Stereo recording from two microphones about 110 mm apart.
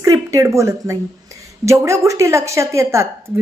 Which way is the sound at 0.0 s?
30° right (ahead or behind).